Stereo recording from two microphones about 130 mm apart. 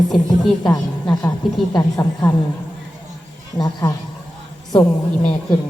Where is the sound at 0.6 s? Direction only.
30° left (ahead or behind).